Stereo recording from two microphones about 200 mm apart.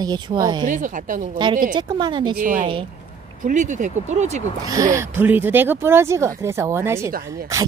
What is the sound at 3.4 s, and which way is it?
Speech, 40° right (ahead or behind).